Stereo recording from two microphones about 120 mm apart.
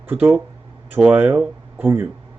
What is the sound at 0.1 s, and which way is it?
A man's voice, 15° right (ahead or behind).